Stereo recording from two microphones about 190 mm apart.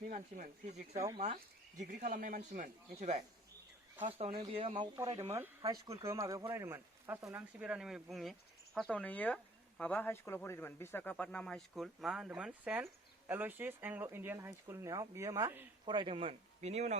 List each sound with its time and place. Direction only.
0.0 s speech: 45° right (ahead or behind)
0.9 s speech: 15° right (ahead or behind)
1.8 s a man's voice: 45° right (ahead or behind); by 16.0 s 15° right (ahead or behind)
16.0 s a man's voice: 30° right (ahead or behind)